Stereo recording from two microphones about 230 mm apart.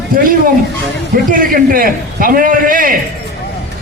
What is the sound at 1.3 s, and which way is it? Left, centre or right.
A man's voice, right.